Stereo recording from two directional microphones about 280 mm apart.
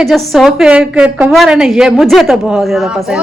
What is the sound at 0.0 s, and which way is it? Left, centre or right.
A woman's voice, centre.